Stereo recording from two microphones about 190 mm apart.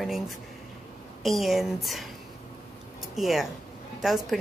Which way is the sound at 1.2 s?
Centre (ahead or behind).